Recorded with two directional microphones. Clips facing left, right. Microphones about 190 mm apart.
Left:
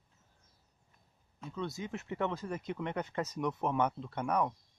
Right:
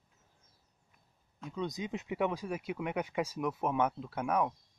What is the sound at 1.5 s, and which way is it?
Speech, 15° right (ahead or behind).